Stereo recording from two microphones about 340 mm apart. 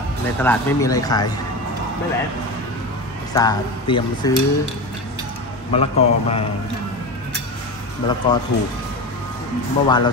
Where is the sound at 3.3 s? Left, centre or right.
Centre.